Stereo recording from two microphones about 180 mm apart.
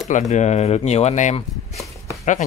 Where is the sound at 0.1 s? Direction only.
40° left (ahead or behind).